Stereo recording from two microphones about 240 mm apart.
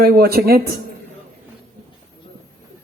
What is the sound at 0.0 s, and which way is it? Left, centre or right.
Speech, right.